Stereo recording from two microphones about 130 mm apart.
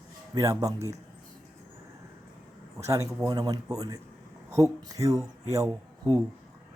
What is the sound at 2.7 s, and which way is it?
Speech, 25° right (ahead or behind).